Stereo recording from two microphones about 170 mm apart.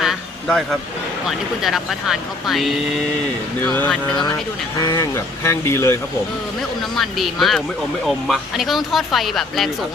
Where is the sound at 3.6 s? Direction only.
10° left (ahead or behind).